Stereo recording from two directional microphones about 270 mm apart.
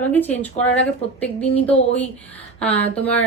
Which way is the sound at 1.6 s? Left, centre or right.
Left.